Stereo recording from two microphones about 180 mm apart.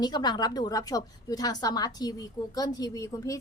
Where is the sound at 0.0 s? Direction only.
25° left (ahead or behind).